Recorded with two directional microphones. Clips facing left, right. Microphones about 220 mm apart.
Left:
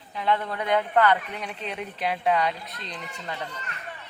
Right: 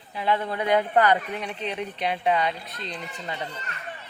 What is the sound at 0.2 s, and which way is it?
Speech, 5° right (ahead or behind).